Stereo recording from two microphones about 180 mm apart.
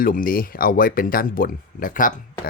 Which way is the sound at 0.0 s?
50° left (ahead or behind).